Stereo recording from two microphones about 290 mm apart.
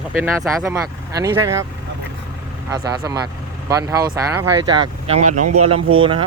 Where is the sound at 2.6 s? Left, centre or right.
Centre.